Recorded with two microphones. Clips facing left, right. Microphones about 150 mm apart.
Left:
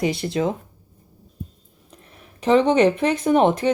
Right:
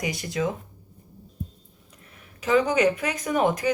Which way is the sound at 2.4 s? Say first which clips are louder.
Left 5 dB; 30° left (ahead or behind).